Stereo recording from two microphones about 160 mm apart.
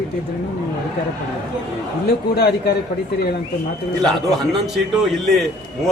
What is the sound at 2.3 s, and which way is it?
Speech, 90° left.